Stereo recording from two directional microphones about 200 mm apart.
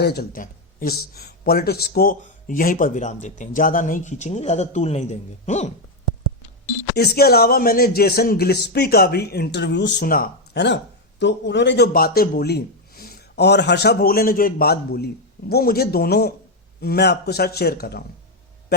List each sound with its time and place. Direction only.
0.0 s speech: 55° left (ahead or behind); by 5.7 s 35° left (ahead or behind)
6.9 s a man's voice: 50° left (ahead or behind)